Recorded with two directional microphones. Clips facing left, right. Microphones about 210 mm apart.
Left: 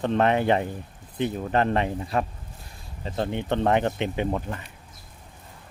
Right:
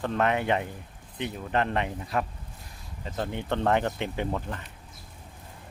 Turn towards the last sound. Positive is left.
turn(degrees=10)  # may be behind; listen again after turning